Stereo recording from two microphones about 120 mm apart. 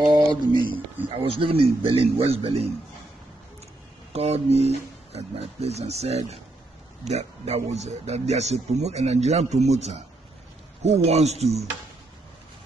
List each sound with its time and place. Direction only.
0.0 s speech: 35° right (ahead or behind)
1.0 s a man's voice: 50° right (ahead or behind)
4.1 s speech: 60° right (ahead or behind)